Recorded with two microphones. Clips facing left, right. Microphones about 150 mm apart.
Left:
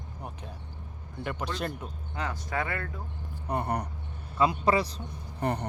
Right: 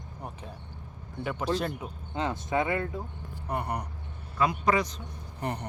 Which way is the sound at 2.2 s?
20° right (ahead or behind).